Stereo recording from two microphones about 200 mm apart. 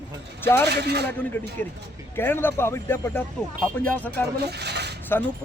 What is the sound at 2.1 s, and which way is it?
Speech, 10° left (ahead or behind).